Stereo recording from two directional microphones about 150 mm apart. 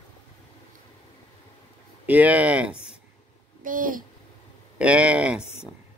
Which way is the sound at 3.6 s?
65° right (ahead or behind).